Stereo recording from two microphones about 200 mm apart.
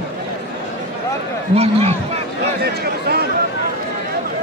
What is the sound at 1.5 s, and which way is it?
Speech, 30° right (ahead or behind).